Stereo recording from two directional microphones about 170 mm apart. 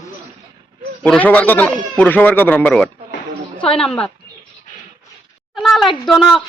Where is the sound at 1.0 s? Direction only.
10° left (ahead or behind).